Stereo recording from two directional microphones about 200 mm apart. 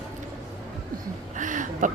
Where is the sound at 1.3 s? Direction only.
40° right (ahead or behind).